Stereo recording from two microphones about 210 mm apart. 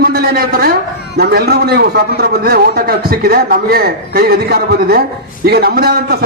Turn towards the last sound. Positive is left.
turn(degrees=-45)  # may be behind; listen again after turning